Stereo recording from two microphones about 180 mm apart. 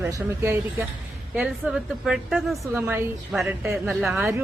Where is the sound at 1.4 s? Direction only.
5° right (ahead or behind).